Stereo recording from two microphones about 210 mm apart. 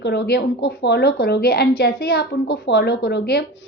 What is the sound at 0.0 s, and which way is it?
A woman's voice, 50° left (ahead or behind).